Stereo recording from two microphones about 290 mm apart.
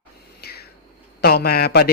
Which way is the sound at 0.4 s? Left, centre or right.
Left.